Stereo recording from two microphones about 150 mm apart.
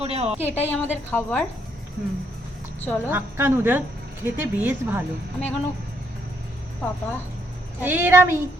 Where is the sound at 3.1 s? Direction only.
15° right (ahead or behind).